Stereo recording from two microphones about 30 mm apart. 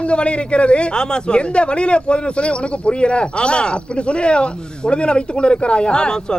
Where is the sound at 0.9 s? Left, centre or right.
Left.